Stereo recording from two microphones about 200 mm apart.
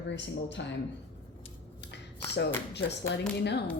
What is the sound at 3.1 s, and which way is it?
Speech, 60° left (ahead or behind).